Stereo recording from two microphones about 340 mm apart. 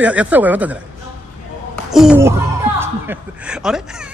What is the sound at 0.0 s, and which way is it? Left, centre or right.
Speech, centre.